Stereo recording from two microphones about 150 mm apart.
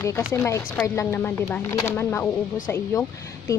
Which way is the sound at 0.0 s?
20° left (ahead or behind).